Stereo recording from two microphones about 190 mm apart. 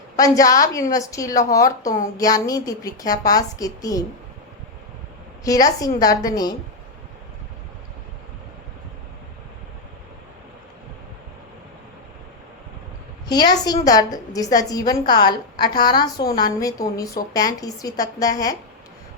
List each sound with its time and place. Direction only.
0.2 s a woman's voice: 20° left (ahead or behind)
5.5 s a woman's voice: 20° left (ahead or behind)
13.2 s a woman's voice: 20° left (ahead or behind)